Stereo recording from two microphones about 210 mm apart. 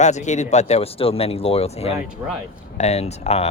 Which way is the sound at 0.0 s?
35° left (ahead or behind).